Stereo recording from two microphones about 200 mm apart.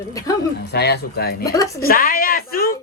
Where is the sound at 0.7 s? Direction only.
55° left (ahead or behind).